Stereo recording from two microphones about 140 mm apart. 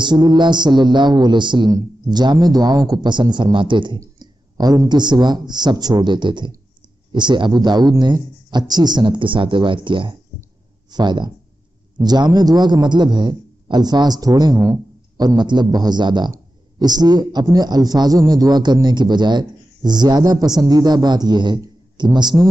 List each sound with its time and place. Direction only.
0.0 s a man's voice: 30° right (ahead or behind)